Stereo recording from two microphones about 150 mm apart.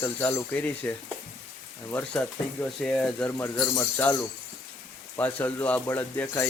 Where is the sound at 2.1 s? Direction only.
5° left (ahead or behind).